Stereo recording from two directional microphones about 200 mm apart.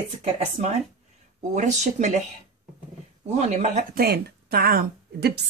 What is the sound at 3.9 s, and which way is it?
A woman's voice, 50° right (ahead or behind).